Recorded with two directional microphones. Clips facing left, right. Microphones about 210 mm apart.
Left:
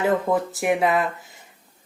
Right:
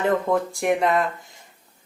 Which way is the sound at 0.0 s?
5° left (ahead or behind).